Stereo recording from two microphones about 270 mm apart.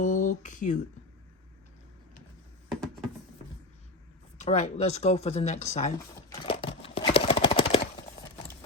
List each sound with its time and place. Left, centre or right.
0.0 s speech: left
4.4 s speech: left
6.4 s a sound: centre